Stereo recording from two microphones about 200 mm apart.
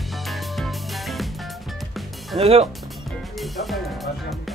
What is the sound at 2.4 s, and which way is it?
Speech, 30° right (ahead or behind).